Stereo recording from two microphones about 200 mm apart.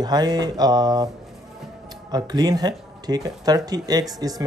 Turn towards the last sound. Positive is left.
turn(degrees=-20)  # may be behind; listen again after turning